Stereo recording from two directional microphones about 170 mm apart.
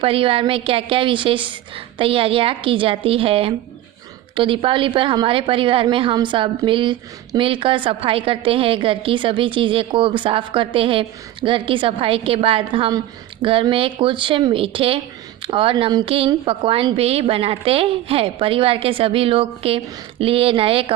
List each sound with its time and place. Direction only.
0.0 s speech: 30° right (ahead or behind)